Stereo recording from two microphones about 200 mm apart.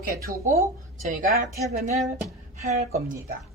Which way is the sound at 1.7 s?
35° right (ahead or behind).